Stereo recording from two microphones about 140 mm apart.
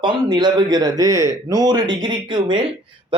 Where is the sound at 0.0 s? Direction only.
35° right (ahead or behind).